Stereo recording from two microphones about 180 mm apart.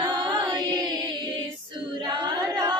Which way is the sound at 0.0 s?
25° right (ahead or behind).